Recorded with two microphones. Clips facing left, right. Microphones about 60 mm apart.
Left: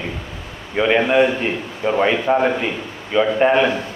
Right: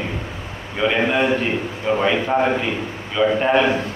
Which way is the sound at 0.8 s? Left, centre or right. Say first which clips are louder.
Left 4 dB; centre.